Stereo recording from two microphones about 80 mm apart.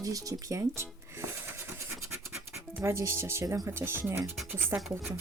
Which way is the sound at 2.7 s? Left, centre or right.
Right.